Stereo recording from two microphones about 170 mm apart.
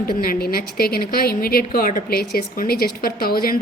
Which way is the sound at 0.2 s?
60° left (ahead or behind).